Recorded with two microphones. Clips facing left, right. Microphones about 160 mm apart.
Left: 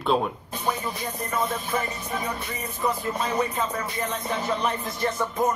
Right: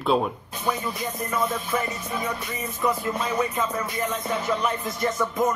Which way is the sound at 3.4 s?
30° left (ahead or behind).